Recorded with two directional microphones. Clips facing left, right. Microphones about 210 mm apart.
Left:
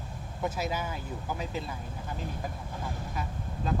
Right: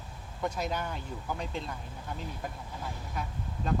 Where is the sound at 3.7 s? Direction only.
Centre (ahead or behind).